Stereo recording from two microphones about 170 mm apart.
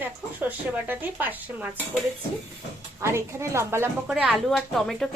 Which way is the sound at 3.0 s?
15° right (ahead or behind).